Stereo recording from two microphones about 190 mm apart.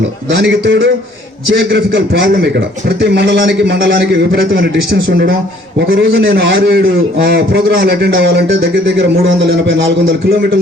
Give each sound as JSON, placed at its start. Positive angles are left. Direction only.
{"t": 0.3, "sound": "a man's voice", "side_deg": -65}